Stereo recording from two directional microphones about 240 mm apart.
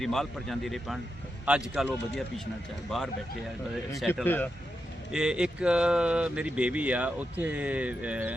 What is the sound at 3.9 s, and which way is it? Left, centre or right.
Speech, centre.